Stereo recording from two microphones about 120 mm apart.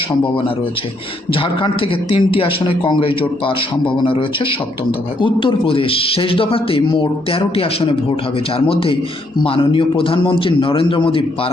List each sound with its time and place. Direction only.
1.3 s a man's voice: 45° left (ahead or behind)